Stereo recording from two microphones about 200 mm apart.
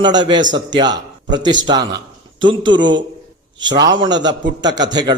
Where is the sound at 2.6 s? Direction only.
25° right (ahead or behind).